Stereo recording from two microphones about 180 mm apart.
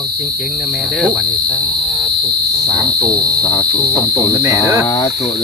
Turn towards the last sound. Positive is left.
turn(degrees=15)  # may be behind; listen again after turning